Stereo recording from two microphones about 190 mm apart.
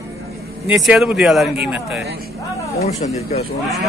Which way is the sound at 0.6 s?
5° right (ahead or behind).